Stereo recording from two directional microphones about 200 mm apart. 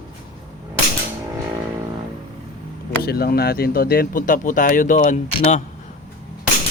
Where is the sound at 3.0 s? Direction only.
50° left (ahead or behind).